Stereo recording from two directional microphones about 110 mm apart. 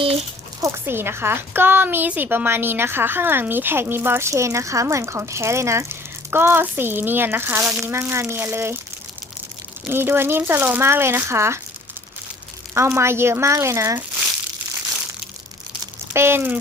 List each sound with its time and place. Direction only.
0.6 s a woman's voice: 20° right (ahead or behind)
9.8 s a woman's voice: 20° right (ahead or behind)
12.7 s a woman's voice: 25° right (ahead or behind)
16.1 s a woman's voice: 20° right (ahead or behind)